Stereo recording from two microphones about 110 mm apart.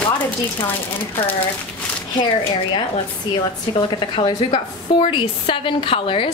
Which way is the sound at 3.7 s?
45° left (ahead or behind).